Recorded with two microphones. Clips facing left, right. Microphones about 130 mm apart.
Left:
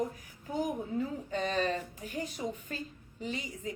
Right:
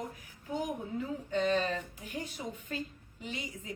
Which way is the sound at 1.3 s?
40° left (ahead or behind).